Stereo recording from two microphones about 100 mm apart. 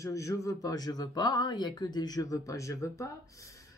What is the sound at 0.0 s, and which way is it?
Speech, 30° left (ahead or behind).